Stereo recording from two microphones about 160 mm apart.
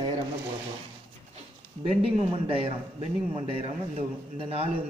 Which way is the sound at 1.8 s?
40° right (ahead or behind).